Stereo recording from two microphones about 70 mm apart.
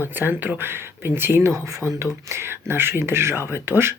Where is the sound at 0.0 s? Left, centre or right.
Right.